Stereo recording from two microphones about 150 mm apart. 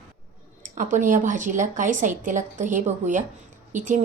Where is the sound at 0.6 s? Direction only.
60° right (ahead or behind).